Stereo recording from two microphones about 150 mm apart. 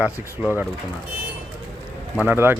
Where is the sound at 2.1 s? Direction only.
10° right (ahead or behind).